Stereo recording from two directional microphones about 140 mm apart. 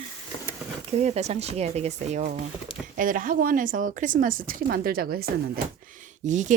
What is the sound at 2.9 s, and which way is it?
A woman's voice, 70° right (ahead or behind).